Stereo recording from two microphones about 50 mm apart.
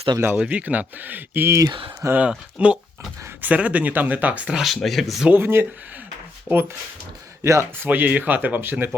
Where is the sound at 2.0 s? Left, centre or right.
Right.